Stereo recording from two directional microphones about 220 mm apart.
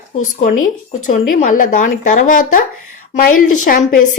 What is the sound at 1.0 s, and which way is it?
A woman's voice, 35° left (ahead or behind).